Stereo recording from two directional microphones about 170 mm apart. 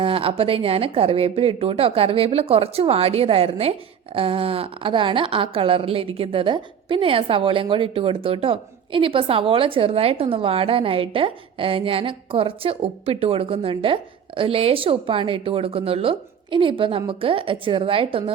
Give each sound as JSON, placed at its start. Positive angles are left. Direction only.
{"t": 0.0, "sound": "speech", "side_deg": -30}